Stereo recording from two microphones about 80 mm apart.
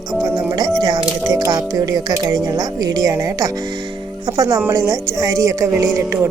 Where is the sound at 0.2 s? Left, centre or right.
Right.